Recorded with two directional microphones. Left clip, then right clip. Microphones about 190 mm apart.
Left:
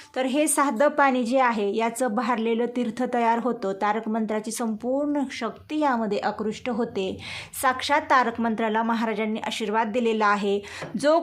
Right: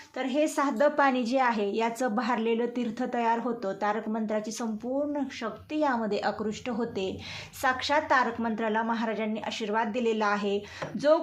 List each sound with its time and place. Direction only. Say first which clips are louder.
0.2 s a woman's voice: left 4 dB; 40° left (ahead or behind)